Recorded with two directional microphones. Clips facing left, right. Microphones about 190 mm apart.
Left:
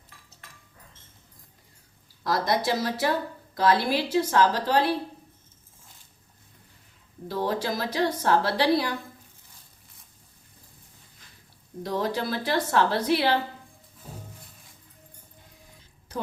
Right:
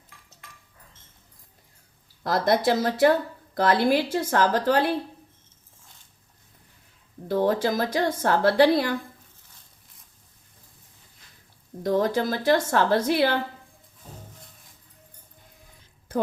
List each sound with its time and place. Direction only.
2.2 s a woman's voice: 55° right (ahead or behind)
7.3 s a woman's voice: 50° right (ahead or behind)
11.8 s a woman's voice: 50° right (ahead or behind)